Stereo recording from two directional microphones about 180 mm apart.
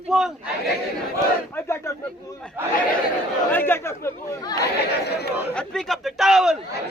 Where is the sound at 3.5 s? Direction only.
10° left (ahead or behind).